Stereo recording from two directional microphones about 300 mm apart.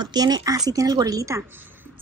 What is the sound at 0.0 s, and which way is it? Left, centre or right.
A woman's voice, centre.